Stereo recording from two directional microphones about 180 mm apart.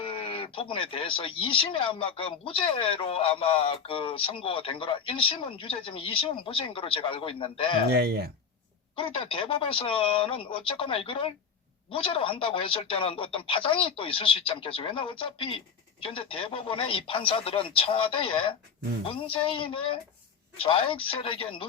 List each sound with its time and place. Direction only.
0.0 s speech: 30° left (ahead or behind)
7.9 s speech: 60° right (ahead or behind)
9.0 s speech: 30° left (ahead or behind)